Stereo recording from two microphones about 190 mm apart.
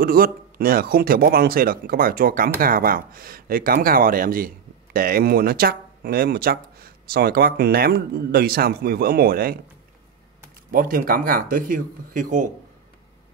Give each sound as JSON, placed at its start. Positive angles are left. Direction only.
{"t": 0.0, "sound": "speech", "side_deg": -50}
{"t": 10.7, "sound": "speech", "side_deg": -50}